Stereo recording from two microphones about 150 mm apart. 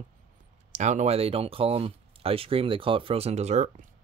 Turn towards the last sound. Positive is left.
turn(degrees=-55)  # may be behind; listen again after turning